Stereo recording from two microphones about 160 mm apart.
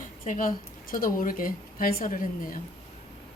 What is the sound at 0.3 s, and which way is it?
A woman's voice, 60° left (ahead or behind).